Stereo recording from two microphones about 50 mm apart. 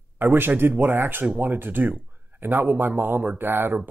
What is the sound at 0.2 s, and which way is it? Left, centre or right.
Speech, right.